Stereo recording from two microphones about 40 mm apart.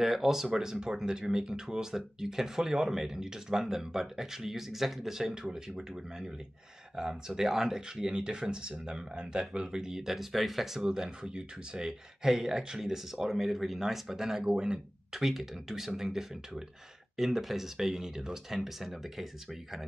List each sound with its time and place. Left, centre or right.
0.0 s speech: centre
10.8 s speech: centre
15.1 s speech: centre